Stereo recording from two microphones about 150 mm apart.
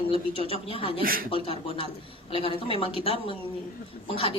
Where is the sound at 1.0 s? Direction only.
75° right (ahead or behind).